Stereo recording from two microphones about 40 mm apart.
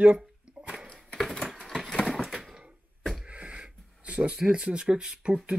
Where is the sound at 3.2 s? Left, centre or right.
Right.